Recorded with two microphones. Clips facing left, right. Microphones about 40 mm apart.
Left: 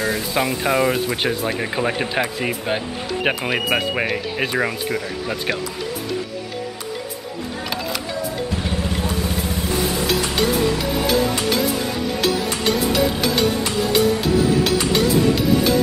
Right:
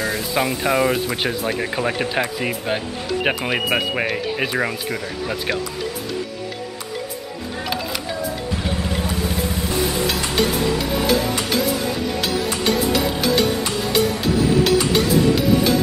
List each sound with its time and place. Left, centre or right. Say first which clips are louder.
0.0 s speech: even; centre
8.5 s vehicle: even; centre
12.2 s music: left 1 dB; centre